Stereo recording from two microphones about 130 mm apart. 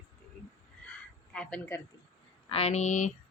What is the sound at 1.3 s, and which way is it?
Speech, 10° left (ahead or behind).